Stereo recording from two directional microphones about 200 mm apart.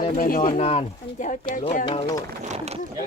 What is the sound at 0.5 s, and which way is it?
Speech, 30° left (ahead or behind).